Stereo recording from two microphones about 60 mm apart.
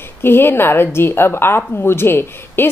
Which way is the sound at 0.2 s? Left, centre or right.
Left.